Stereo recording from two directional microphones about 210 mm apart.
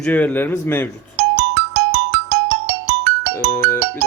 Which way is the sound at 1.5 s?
50° right (ahead or behind).